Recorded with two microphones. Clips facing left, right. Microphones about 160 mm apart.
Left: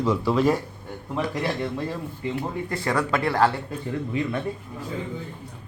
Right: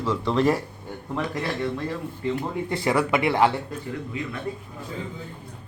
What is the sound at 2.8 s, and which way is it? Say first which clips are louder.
Speech: right 2 dB; 15° right (ahead or behind).